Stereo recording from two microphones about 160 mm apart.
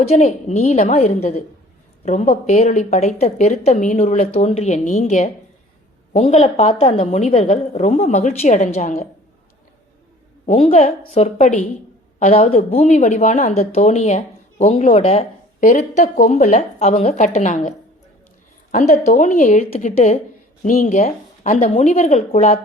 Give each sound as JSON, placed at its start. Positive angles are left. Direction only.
{"t": 0.1, "sound": "a woman's voice", "side_deg": 45}
{"t": 10.4, "sound": "a woman's voice", "side_deg": 45}